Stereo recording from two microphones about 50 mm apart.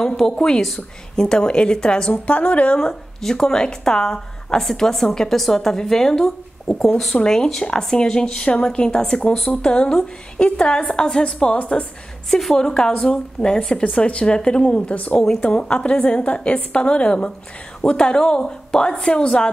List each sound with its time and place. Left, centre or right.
0.0 s speech: centre
2.2 s a woman's voice: left
2.8 s speech: centre
11.3 s a woman's voice: left
12.3 s a woman's voice: centre
12.5 s a woman's voice: centre
15.2 s a woman's voice: centre